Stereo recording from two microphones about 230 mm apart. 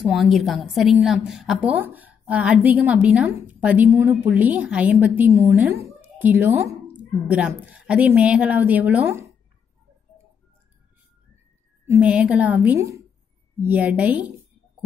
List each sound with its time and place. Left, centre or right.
0.0 s a woman's voice: centre
11.9 s a woman's voice: centre